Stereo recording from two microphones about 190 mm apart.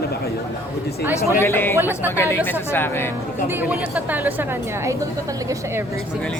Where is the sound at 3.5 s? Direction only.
10° right (ahead or behind).